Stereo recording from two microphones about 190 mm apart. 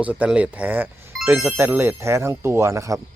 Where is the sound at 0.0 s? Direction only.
10° right (ahead or behind).